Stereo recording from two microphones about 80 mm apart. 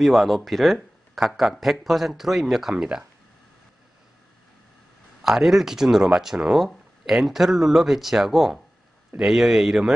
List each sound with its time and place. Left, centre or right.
0.0 s speech: centre
5.2 s speech: centre